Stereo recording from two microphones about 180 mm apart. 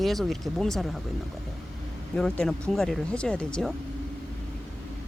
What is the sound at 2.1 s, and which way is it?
Speech, 5° left (ahead or behind).